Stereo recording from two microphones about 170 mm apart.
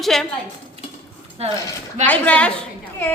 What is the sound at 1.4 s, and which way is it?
Speech, 40° right (ahead or behind).